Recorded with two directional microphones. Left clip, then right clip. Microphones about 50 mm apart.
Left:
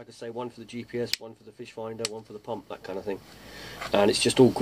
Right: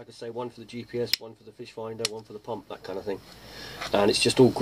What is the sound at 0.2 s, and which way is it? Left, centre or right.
Speech, centre.